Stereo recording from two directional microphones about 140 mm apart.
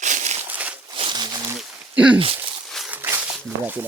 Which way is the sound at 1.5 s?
5° right (ahead or behind).